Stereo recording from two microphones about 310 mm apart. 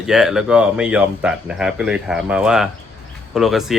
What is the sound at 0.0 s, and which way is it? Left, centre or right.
Speech, centre.